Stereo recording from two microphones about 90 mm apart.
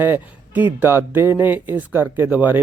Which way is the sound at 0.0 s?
20° right (ahead or behind).